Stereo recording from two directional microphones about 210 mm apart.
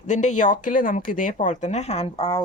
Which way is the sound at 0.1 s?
35° left (ahead or behind).